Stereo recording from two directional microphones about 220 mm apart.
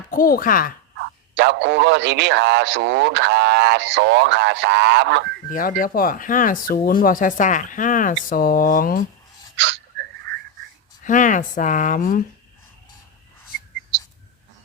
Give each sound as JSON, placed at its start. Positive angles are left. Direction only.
{"t": 0.1, "sound": "speech", "side_deg": 40}
{"t": 0.9, "sound": "speech", "side_deg": -55}
{"t": 5.5, "sound": "speech", "side_deg": 40}
{"t": 11.0, "sound": "speech", "side_deg": 35}